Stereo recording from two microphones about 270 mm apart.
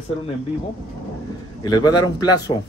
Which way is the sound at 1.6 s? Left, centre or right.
Centre.